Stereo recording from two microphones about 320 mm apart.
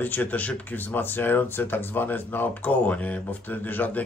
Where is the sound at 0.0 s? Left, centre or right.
Centre.